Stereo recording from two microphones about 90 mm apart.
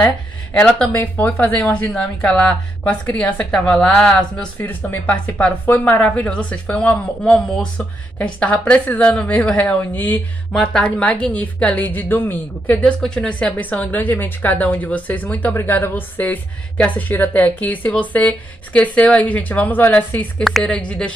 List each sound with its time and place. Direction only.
0.0 s speech: 25° left (ahead or behind)
10.5 s speech: 5° left (ahead or behind)
13.0 s speech: 10° left (ahead or behind)